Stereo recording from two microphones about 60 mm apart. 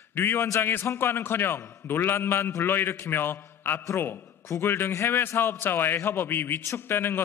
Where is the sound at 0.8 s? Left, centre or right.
Left.